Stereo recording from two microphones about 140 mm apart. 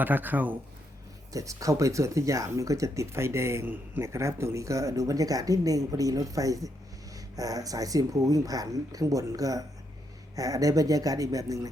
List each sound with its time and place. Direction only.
0.0 s speech: 15° right (ahead or behind)
1.3 s speech: 25° right (ahead or behind)